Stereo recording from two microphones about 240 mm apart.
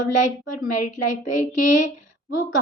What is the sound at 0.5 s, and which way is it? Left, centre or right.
Speech, left.